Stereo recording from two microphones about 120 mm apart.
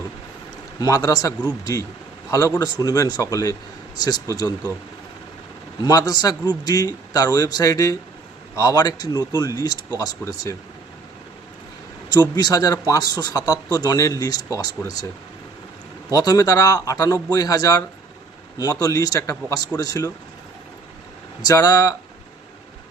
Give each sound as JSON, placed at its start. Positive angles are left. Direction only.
{"t": 0.8, "sound": "speech", "side_deg": 30}
{"t": 2.6, "sound": "a man's voice", "side_deg": 30}
{"t": 5.8, "sound": "speech", "side_deg": 30}
{"t": 12.0, "sound": "speech", "side_deg": 35}
{"t": 16.1, "sound": "a man's voice", "side_deg": 30}
{"t": 21.4, "sound": "speech", "side_deg": 30}